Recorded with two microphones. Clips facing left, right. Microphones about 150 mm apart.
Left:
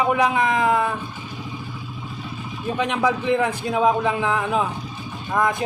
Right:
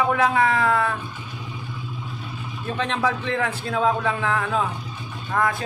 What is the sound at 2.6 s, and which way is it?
A man's voice, 15° left (ahead or behind).